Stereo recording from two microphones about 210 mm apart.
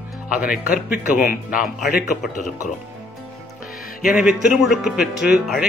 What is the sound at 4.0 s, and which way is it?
Speech, 5° right (ahead or behind).